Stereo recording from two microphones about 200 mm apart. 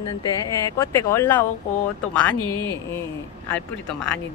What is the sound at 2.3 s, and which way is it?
Speech, 25° right (ahead or behind).